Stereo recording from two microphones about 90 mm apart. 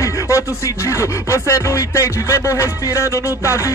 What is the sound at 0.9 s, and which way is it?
Music, 35° left (ahead or behind).